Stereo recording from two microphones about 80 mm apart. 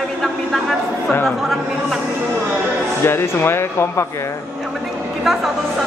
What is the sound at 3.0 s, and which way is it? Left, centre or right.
A man's voice, left.